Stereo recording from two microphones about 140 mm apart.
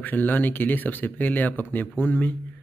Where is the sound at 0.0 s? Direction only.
15° left (ahead or behind).